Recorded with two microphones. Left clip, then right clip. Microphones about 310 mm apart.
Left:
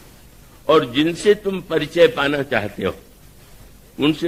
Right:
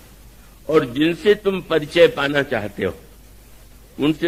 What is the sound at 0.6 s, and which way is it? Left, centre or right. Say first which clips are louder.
Speech: left 2 dB; left.